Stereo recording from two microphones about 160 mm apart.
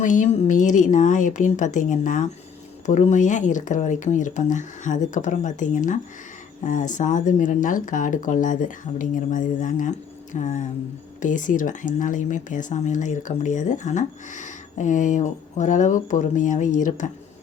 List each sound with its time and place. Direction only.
0.0 s speech: 55° left (ahead or behind)